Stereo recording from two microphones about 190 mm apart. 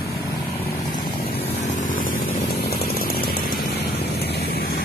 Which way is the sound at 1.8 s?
45° left (ahead or behind).